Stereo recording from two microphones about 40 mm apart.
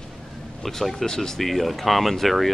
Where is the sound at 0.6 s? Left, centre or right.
Centre.